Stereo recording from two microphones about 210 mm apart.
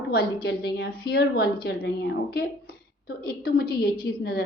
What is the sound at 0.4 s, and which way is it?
A woman's voice, 50° left (ahead or behind).